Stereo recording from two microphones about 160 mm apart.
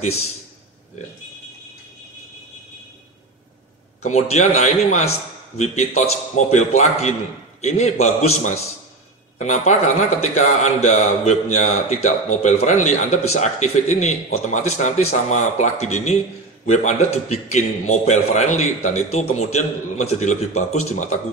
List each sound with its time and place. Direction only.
4.0 s a man's voice: 45° left (ahead or behind)